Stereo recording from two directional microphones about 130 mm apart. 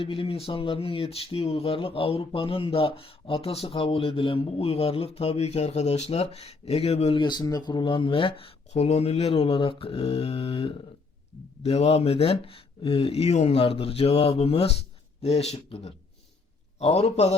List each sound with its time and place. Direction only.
0.0 s speech: 45° left (ahead or behind)
7.2 s a man's voice: 35° left (ahead or behind); by 17.3 s 55° left (ahead or behind)